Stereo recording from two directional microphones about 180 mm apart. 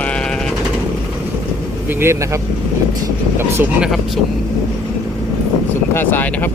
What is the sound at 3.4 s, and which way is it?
Speech, 15° right (ahead or behind).